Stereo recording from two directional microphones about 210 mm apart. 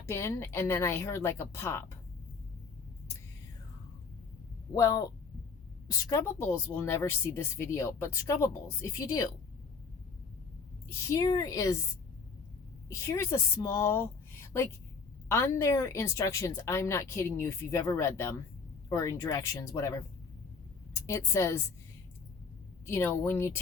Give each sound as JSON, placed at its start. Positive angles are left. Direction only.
{"t": 0.0, "sound": "speech", "side_deg": 15}
{"t": 4.7, "sound": "speech", "side_deg": 15}
{"t": 11.1, "sound": "speech", "side_deg": 15}
{"t": 12.9, "sound": "a woman's voice", "side_deg": 15}
{"t": 21.1, "sound": "speech", "side_deg": 15}
{"t": 22.9, "sound": "speech", "side_deg": 10}